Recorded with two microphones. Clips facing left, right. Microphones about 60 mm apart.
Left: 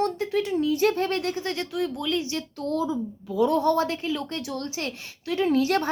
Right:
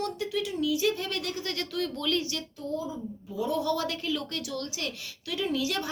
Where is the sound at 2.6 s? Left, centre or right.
Left.